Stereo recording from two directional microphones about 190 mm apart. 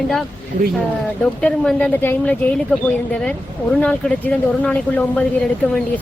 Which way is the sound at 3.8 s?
5° left (ahead or behind).